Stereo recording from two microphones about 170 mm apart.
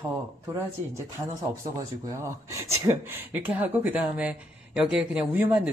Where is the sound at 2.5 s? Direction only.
15° right (ahead or behind).